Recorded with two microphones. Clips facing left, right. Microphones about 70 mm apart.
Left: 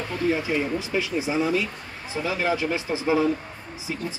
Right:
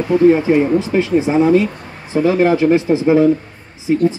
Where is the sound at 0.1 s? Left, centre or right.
Right.